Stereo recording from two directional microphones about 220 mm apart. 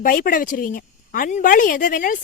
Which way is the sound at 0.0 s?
40° left (ahead or behind).